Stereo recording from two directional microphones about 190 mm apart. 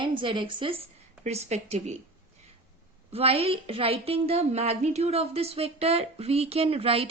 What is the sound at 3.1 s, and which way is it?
A woman's voice, 30° right (ahead or behind).